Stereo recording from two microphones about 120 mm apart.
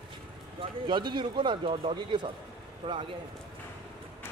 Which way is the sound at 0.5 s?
40° right (ahead or behind).